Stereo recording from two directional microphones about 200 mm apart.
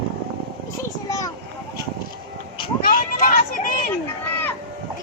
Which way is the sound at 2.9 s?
40° left (ahead or behind).